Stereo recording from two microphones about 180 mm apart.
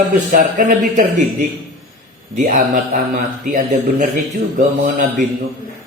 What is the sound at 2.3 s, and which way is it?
A man's voice, 45° right (ahead or behind).